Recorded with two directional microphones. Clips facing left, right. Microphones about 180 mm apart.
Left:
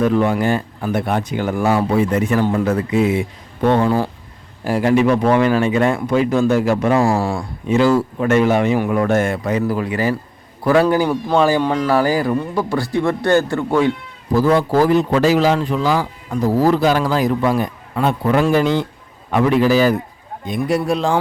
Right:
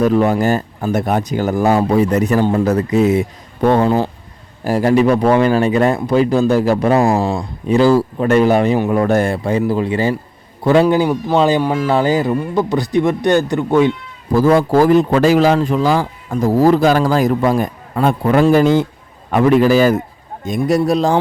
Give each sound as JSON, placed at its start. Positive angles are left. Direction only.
{"t": 0.0, "sound": "speech", "side_deg": -40}
{"t": 2.4, "sound": "speech", "side_deg": -25}
{"t": 2.6, "sound": "speech", "side_deg": -40}
{"t": 7.0, "sound": "speech", "side_deg": -20}
{"t": 7.7, "sound": "speech", "side_deg": -35}
{"t": 11.6, "sound": "speech", "side_deg": -10}
{"t": 11.9, "sound": "speech", "side_deg": -20}
{"t": 14.3, "sound": "speech", "side_deg": -45}